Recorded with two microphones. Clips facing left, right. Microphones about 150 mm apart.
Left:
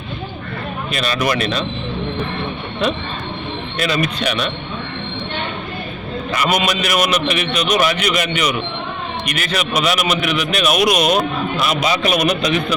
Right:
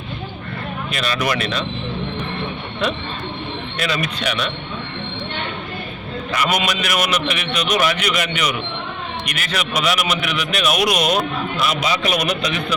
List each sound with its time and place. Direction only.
0.9 s a man's voice: 35° left (ahead or behind)
3.8 s a man's voice: 40° left (ahead or behind)
6.3 s a man's voice: 35° left (ahead or behind)